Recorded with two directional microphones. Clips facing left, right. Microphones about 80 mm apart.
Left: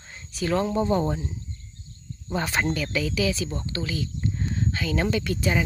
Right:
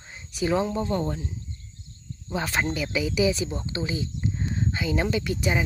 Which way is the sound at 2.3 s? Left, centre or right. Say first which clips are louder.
Left 1 dB; centre.